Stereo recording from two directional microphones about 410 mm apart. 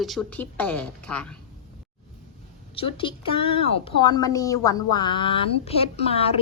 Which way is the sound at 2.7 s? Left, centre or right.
Centre.